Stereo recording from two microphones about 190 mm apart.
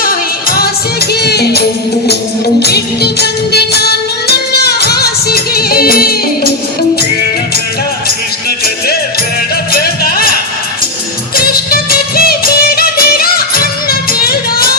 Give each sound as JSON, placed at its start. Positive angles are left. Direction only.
{"t": 0.0, "sound": "music", "side_deg": 50}
{"t": 8.0, "sound": "music", "side_deg": 55}
{"t": 11.3, "sound": "music", "side_deg": 50}